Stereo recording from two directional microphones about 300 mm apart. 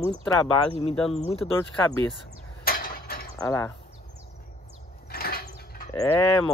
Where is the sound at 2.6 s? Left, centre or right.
Left.